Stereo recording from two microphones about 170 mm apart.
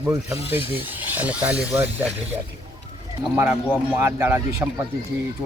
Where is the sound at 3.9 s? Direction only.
15° right (ahead or behind).